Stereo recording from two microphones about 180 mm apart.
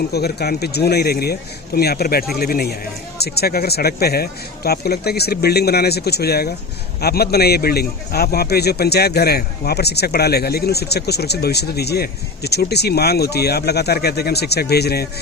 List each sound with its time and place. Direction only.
0.1 s a man's voice: 60° left (ahead or behind)